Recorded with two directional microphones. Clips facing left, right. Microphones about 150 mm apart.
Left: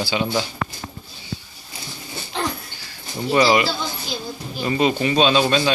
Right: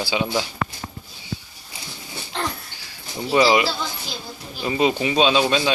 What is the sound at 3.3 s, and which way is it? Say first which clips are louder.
Speech: even; 5° right (ahead or behind).